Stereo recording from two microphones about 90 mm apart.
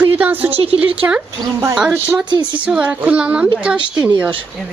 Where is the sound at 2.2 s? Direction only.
60° right (ahead or behind).